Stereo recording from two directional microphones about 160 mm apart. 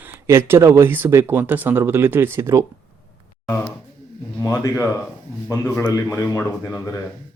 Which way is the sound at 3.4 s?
15° left (ahead or behind).